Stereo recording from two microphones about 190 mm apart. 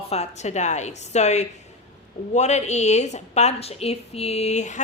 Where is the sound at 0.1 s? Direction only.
35° left (ahead or behind).